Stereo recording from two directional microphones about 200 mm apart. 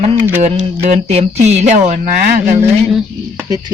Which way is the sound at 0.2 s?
10° right (ahead or behind).